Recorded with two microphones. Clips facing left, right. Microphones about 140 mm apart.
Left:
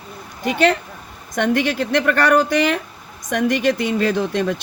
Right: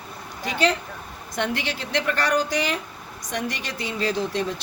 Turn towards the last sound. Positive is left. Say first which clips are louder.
# left 5 dB
turn(degrees=60)  # may be behind; listen again after turning